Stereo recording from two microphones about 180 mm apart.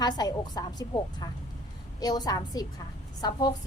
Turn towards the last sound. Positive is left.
turn(degrees=20)  # may be behind; listen again after turning